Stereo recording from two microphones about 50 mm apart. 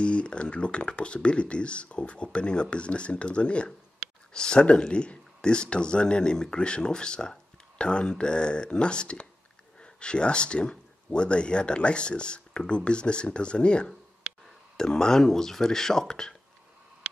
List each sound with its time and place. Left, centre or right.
0.0 s speech: left